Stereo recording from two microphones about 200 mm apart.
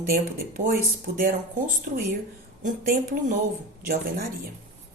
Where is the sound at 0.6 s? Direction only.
45° right (ahead or behind).